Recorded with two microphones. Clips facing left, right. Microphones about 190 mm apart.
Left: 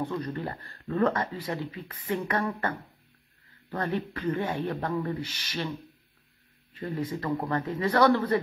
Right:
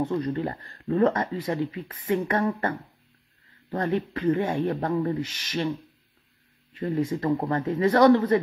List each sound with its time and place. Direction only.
0.0 s speech: 30° right (ahead or behind)
6.7 s speech: 25° right (ahead or behind)